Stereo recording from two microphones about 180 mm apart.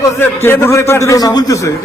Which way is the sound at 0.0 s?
15° left (ahead or behind).